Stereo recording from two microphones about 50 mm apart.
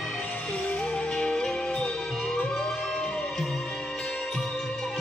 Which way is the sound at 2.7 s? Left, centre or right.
Centre.